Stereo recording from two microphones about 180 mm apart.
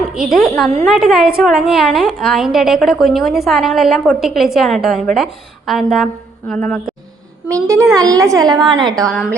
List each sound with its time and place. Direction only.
0.0 s a woman's voice: centre (ahead or behind)
7.4 s a child's voice: 20° right (ahead or behind)
8.5 s a woman's voice: centre (ahead or behind)
8.8 s a woman's voice: 25° right (ahead or behind)